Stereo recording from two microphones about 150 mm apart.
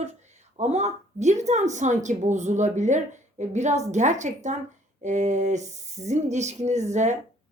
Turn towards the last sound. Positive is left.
turn(degrees=-50)  # may be behind; listen again after turning